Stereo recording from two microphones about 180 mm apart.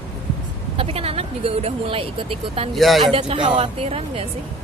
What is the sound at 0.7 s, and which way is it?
Speech, 35° right (ahead or behind).